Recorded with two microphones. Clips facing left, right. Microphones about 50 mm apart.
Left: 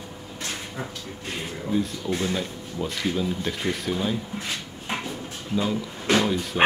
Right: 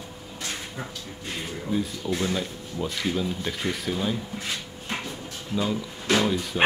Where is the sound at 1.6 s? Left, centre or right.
Centre.